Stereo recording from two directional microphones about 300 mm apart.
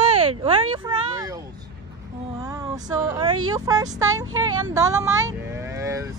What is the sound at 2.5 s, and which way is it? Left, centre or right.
Speech, centre.